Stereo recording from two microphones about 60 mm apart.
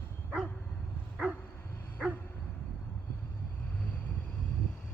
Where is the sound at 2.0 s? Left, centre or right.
Centre.